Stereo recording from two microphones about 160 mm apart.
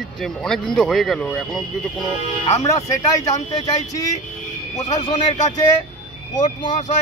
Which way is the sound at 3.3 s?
45° left (ahead or behind).